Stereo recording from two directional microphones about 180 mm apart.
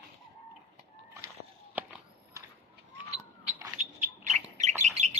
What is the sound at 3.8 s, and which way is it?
Bird, 40° right (ahead or behind).